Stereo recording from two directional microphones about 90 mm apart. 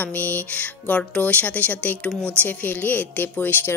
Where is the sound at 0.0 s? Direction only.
20° left (ahead or behind).